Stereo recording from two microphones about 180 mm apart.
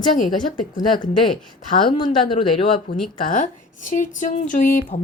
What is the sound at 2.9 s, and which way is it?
Speech, 65° left (ahead or behind).